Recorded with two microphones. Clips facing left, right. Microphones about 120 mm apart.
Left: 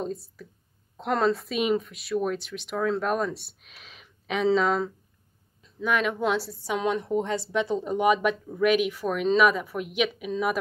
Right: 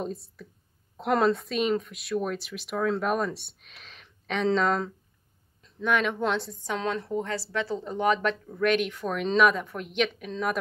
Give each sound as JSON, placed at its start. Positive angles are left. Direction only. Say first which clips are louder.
{"t": 0.0, "sound": "a woman's voice", "louder": "left 2 dB", "side_deg": 0}